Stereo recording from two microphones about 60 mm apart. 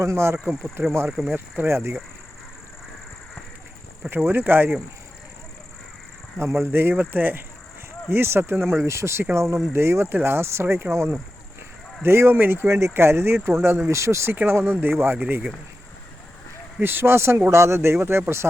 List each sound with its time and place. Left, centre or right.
0.0 s speech: right
1.0 s speech: centre
1.6 s speech: right
4.3 s speech: right
6.4 s speech: right
6.7 s speech: right
12.6 s speech: right
14.3 s speech: right
16.8 s speech: right